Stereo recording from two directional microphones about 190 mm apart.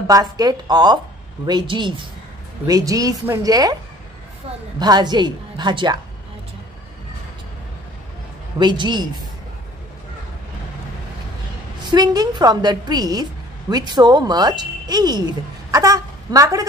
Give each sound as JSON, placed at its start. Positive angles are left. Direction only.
{"t": 0.0, "sound": "a woman's voice", "side_deg": -20}
{"t": 4.7, "sound": "a woman's voice", "side_deg": -20}
{"t": 8.5, "sound": "a woman's voice", "side_deg": -25}
{"t": 11.9, "sound": "a woman's voice", "side_deg": -20}